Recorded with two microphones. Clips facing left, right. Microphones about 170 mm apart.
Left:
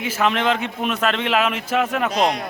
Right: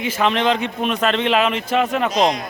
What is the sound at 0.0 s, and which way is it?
A man's voice, 5° left (ahead or behind).